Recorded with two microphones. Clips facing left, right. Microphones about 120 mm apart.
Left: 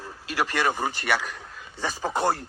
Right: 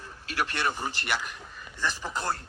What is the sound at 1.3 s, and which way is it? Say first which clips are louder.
Speech: left 3 dB; 85° left.